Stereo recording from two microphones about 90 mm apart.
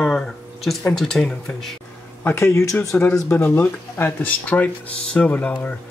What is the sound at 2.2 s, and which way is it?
Speech, 30° left (ahead or behind).